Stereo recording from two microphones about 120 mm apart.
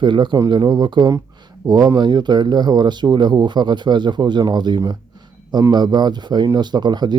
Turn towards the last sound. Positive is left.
turn(degrees=-35)  # may be behind; listen again after turning